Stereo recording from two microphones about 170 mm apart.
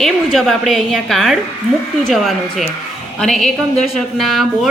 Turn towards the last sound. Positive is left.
turn(degrees=0)  # may be behind; listen again after turning